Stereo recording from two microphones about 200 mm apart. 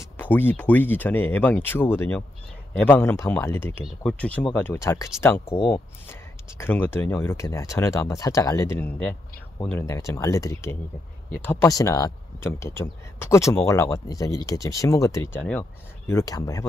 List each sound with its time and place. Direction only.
0.0 s speech: 10° left (ahead or behind)